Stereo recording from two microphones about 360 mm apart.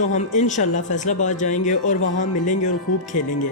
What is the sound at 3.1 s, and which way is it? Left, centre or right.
Speech, left.